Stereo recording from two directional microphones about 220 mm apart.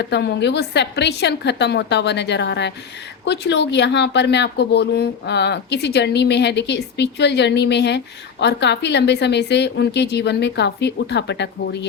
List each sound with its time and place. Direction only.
0.0 s speech: 50° left (ahead or behind)